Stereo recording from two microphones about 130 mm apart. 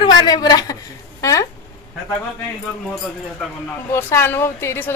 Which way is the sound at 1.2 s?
25° left (ahead or behind).